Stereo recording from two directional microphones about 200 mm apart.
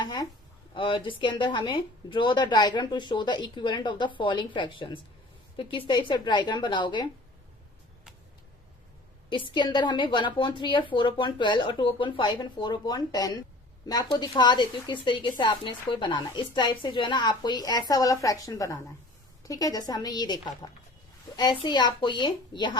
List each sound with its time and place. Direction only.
0.0 s a sound: 20° left (ahead or behind)
0.7 s speech: 25° left (ahead or behind)
9.3 s speech: 25° left (ahead or behind)